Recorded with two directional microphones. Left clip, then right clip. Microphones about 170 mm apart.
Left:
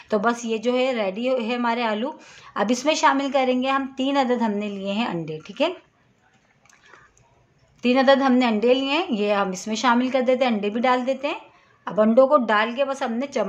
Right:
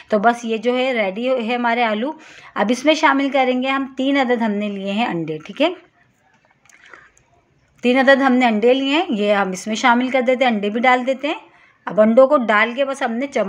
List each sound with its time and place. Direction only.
0.1 s a woman's voice: 20° right (ahead or behind)
6.7 s a sound: 20° right (ahead or behind)
7.8 s a woman's voice: 20° right (ahead or behind)